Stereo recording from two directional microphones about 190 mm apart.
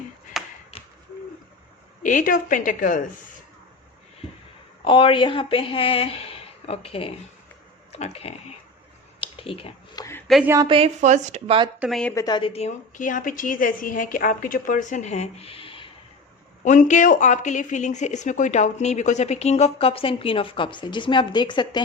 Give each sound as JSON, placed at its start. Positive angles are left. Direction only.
{"t": 0.4, "sound": "a sound", "side_deg": 0}
{"t": 2.0, "sound": "a woman's voice", "side_deg": 45}
{"t": 4.8, "sound": "a woman's voice", "side_deg": 30}
{"t": 9.2, "sound": "a sound", "side_deg": 30}
{"t": 10.0, "sound": "a sound", "side_deg": 15}
{"t": 10.2, "sound": "a woman's voice", "side_deg": 0}
{"t": 10.7, "sound": "speech", "side_deg": -30}
{"t": 11.8, "sound": "a woman's voice", "side_deg": 0}
{"t": 12.1, "sound": "a woman's voice", "side_deg": 20}
{"t": 16.6, "sound": "a woman's voice", "side_deg": 40}